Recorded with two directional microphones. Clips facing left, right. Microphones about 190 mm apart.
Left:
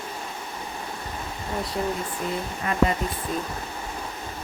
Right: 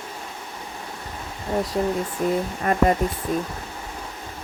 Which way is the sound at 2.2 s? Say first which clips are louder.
Right 9 dB; 45° right (ahead or behind).